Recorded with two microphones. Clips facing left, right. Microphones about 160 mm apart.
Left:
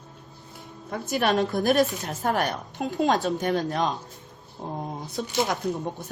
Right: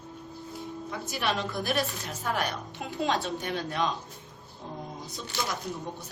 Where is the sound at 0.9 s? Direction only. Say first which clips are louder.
Left 8 dB; 50° left (ahead or behind).